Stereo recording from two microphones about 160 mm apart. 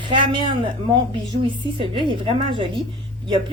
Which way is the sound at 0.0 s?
30° right (ahead or behind).